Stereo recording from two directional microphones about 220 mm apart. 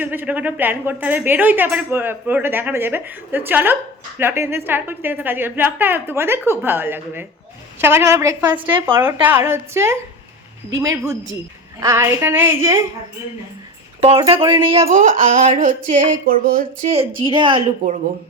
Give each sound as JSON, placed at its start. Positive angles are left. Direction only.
{"t": 0.0, "sound": "speech", "side_deg": -10}
{"t": 14.0, "sound": "speech", "side_deg": -20}
{"t": 17.2, "sound": "speech", "side_deg": -20}